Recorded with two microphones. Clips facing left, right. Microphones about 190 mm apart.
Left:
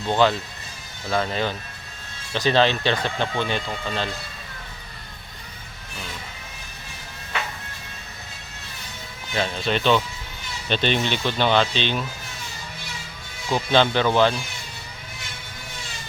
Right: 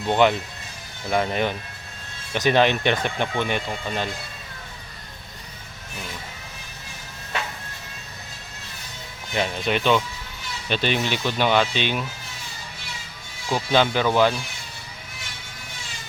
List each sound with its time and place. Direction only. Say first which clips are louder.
0.1 s speech: right 1 dB; 20° right (ahead or behind)
9.3 s speech: even; 15° right (ahead or behind)
13.5 s speech: left 1 dB; 5° right (ahead or behind)